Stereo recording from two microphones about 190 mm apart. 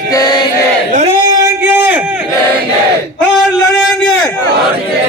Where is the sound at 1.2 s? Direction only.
15° right (ahead or behind).